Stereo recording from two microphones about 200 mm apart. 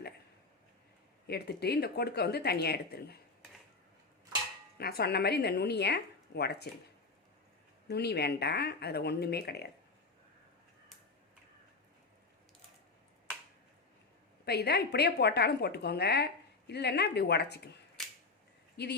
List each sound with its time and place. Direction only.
1.3 s speech: 55° left (ahead or behind)
4.8 s a woman's voice: 50° left (ahead or behind)
7.9 s a woman's voice: 55° left (ahead or behind)
14.4 s a woman's voice: 55° left (ahead or behind)
18.8 s a woman's voice: 55° left (ahead or behind)